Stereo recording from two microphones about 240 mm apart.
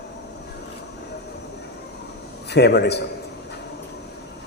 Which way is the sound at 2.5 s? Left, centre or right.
Left.